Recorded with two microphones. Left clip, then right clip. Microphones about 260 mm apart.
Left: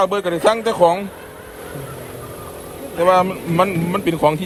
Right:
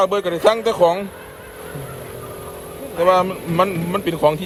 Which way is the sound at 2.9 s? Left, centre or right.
Centre.